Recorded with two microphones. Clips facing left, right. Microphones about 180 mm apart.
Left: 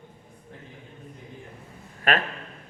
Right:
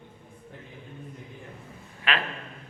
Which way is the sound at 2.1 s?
45° left (ahead or behind).